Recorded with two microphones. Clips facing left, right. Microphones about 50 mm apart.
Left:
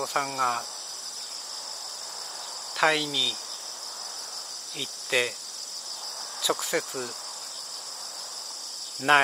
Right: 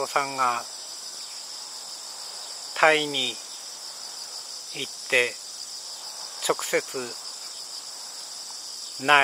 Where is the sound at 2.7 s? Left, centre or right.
Right.